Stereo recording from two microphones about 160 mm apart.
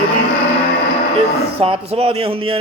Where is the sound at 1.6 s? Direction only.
35° right (ahead or behind).